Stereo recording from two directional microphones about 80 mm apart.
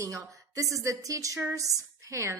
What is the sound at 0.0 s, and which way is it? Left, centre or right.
A woman's voice, right.